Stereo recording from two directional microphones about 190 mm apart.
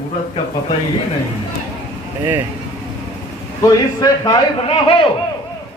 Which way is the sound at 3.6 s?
20° left (ahead or behind).